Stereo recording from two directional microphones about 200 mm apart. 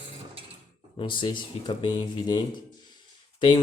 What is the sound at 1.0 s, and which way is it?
Speech, 25° left (ahead or behind).